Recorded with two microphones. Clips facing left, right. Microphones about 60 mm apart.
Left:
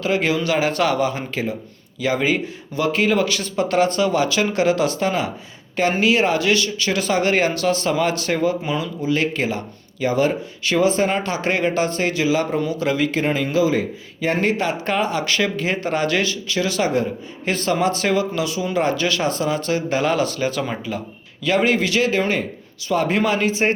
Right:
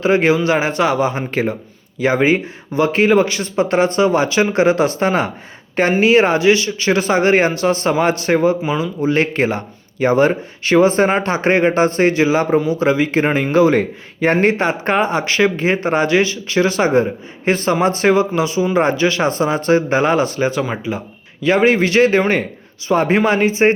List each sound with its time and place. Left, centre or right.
0.0 s speech: right
8.6 s speech: centre
9.0 s speech: right
14.4 s speech: right; by 21.0 s centre
21.4 s speech: right